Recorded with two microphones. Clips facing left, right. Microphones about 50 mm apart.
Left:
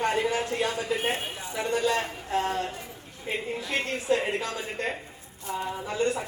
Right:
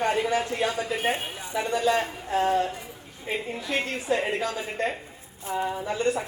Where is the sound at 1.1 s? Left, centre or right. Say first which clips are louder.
Right 1 dB; right.